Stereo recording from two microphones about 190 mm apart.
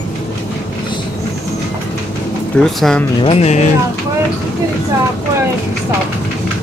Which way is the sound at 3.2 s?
35° left (ahead or behind).